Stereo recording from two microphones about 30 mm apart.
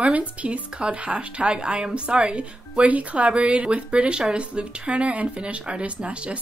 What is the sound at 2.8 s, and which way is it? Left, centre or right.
Speech, right.